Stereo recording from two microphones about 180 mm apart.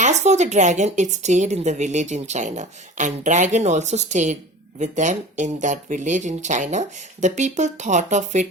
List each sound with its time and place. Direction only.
0.0 s speech: 40° right (ahead or behind)